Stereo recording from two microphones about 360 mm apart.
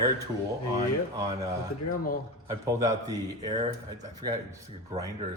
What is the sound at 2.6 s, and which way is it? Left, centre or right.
Speech, centre.